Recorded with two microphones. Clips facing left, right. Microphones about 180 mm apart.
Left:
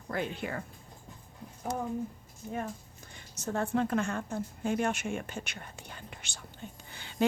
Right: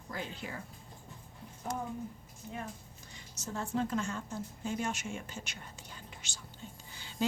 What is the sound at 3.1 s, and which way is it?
Speech, 60° left (ahead or behind).